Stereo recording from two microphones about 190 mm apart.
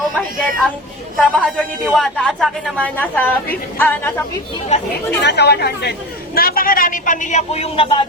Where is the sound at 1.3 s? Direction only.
5° right (ahead or behind).